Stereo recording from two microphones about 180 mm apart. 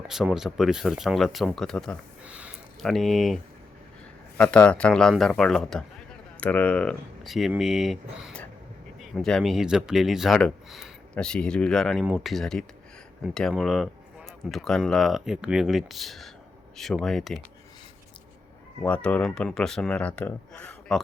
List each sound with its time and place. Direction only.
0.1 s speech: 5° right (ahead or behind)
2.2 s speech: 5° right (ahead or behind)
18.8 s speech: 10° left (ahead or behind)